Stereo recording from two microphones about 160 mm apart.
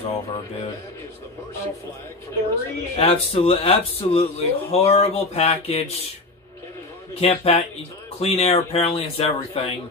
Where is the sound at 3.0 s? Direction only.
40° left (ahead or behind).